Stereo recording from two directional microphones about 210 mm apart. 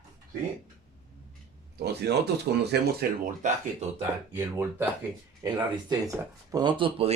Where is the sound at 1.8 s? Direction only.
50° right (ahead or behind).